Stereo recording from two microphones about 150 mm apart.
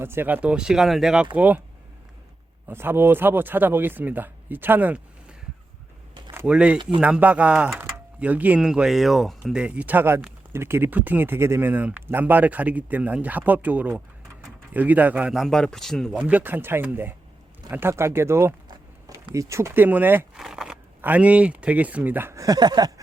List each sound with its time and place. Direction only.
0.0 s speech: 15° right (ahead or behind)
2.6 s speech: 15° right (ahead or behind)
6.4 s speech: 5° right (ahead or behind)
16.1 s speech: 10° right (ahead or behind); by 22.9 s 25° right (ahead or behind)